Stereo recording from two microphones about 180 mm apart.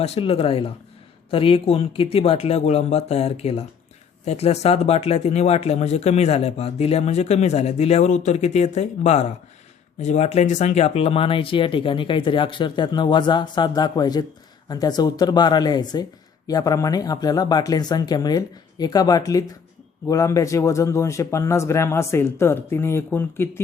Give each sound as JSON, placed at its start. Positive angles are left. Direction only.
{"t": 0.0, "sound": "speech", "side_deg": 35}